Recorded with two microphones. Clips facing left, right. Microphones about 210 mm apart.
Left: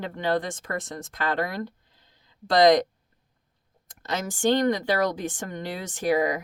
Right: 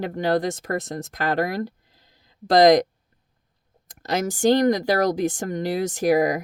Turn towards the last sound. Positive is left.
turn(degrees=-40)  # may be behind; listen again after turning